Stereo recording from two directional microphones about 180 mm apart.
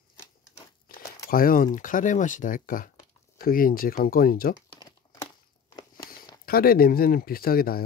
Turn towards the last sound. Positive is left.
turn(degrees=55)  # may be behind; listen again after turning